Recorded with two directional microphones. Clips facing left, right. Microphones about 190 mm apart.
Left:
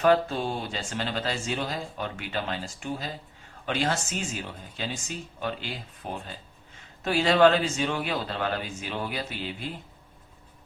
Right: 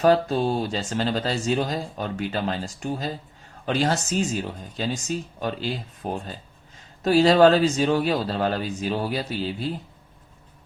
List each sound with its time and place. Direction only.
0.0 s speech: 35° right (ahead or behind)